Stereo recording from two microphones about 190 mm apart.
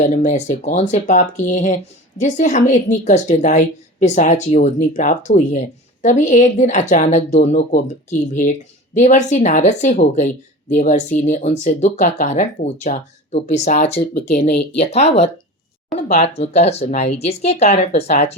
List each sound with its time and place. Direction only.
0.0 s speech: 40° left (ahead or behind)